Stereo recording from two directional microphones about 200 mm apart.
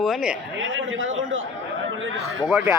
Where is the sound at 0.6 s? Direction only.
75° right (ahead or behind).